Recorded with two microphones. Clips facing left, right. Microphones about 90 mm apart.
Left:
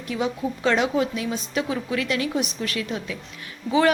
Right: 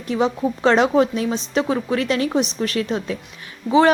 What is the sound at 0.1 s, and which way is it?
Speech, 35° right (ahead or behind).